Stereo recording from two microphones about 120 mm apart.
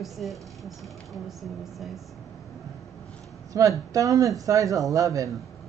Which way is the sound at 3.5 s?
30° right (ahead or behind).